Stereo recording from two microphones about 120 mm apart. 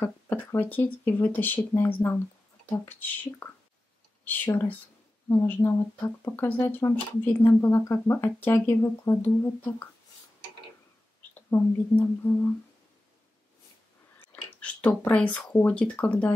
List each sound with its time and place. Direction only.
0.0 s speech: 20° left (ahead or behind)
11.3 s speech: 15° left (ahead or behind)
14.3 s speech: 10° left (ahead or behind)